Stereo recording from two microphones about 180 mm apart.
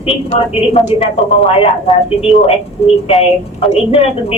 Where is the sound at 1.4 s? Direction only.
30° left (ahead or behind).